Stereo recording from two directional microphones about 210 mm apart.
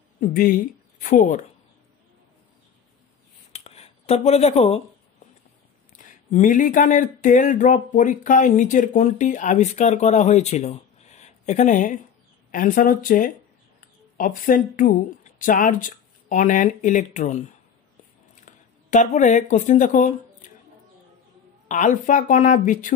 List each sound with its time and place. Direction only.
0.2 s a woman's voice: 40° left (ahead or behind)
3.5 s a sound: 30° left (ahead or behind)
5.9 s speech: 40° left (ahead or behind)
21.6 s speech: 35° left (ahead or behind)